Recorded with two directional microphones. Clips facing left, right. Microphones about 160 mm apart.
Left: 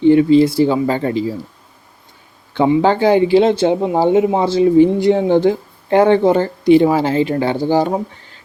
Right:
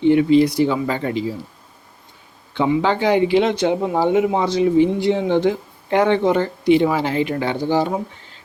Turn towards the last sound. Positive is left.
turn(degrees=40)  # may be behind; listen again after turning